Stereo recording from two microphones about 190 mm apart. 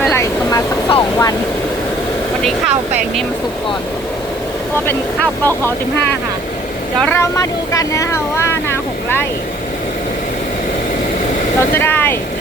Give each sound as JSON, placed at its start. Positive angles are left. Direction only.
{"t": 0.1, "sound": "vehicle", "side_deg": 15}
{"t": 7.0, "sound": "speech", "side_deg": 15}
{"t": 11.8, "sound": "speech", "side_deg": 10}